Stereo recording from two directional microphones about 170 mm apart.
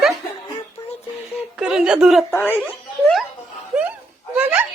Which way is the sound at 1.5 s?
5° right (ahead or behind).